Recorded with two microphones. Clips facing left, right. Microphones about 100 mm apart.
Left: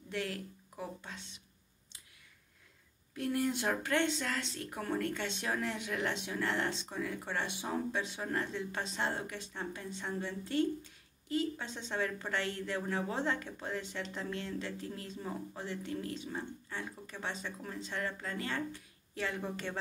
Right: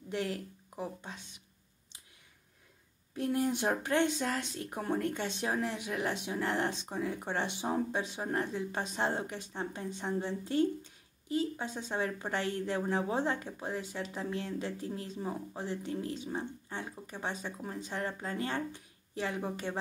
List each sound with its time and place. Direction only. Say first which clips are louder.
0.1 s speech: right 3 dB; 20° right (ahead or behind)
3.2 s speech: right 2 dB; 20° right (ahead or behind)